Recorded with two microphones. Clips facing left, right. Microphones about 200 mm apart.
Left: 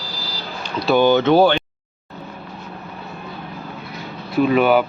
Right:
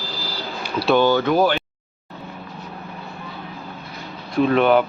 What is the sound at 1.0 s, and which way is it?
Speech, 20° left (ahead or behind).